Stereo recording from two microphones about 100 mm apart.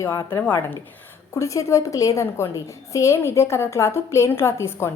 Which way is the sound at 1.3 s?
30° left (ahead or behind).